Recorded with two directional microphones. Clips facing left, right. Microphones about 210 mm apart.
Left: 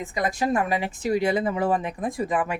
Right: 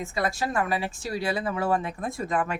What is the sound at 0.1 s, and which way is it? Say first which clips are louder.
Speech: left 5 dB; 20° left (ahead or behind).